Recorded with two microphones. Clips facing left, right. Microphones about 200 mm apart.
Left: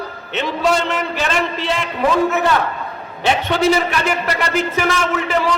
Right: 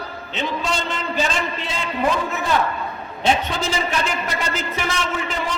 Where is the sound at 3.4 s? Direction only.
70° left (ahead or behind).